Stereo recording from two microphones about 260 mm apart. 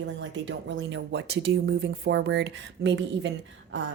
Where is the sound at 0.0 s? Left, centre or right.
Right.